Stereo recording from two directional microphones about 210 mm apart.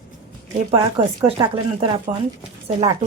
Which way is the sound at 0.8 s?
25° right (ahead or behind).